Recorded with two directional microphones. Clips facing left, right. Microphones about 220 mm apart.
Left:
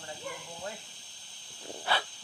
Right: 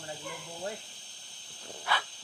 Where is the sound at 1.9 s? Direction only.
30° left (ahead or behind).